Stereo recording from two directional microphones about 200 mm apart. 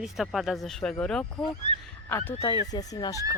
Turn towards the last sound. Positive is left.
turn(degrees=20)  # may be behind; listen again after turning